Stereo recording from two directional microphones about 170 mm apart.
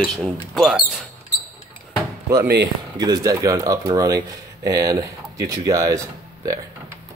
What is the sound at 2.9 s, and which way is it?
Speech, 25° right (ahead or behind).